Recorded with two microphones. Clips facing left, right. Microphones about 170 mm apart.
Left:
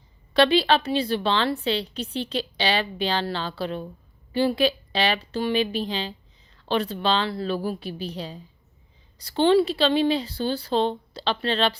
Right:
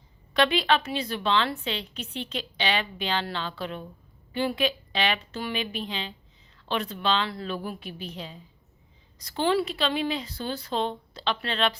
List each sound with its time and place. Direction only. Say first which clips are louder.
0.3 s a woman's voice: left 4 dB; 35° left (ahead or behind)